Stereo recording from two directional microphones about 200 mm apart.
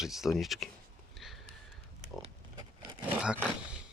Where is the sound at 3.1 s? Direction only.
5° right (ahead or behind).